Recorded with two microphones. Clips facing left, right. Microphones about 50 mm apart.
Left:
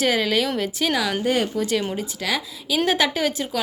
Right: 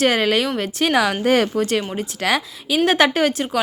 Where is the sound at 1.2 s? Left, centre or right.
Right.